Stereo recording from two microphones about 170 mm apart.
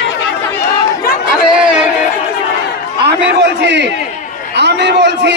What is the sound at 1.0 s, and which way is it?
Chatter, 60° left (ahead or behind).